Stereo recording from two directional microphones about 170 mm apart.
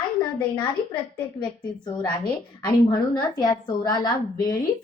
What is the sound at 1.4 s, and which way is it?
Speech, 25° left (ahead or behind).